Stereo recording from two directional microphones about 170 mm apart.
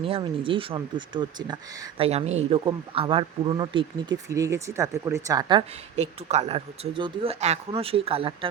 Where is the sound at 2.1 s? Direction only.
40° right (ahead or behind); by 5.6 s 20° right (ahead or behind).